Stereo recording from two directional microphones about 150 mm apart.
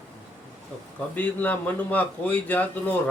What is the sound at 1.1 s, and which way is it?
A man's voice, 10° left (ahead or behind).